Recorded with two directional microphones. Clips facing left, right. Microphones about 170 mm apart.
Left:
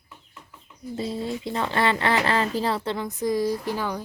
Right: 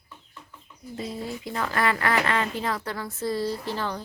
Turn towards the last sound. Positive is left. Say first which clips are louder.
# left 3 dB
turn(degrees=10)  # may be behind; listen again after turning